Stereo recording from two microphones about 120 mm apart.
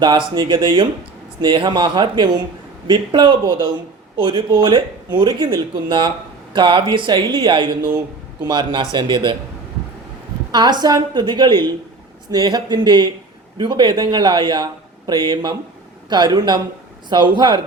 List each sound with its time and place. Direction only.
0.0 s a man's voice: 40° right (ahead or behind)
10.5 s a man's voice: 35° right (ahead or behind)